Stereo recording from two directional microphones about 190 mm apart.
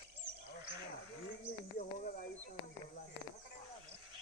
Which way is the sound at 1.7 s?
50° left (ahead or behind).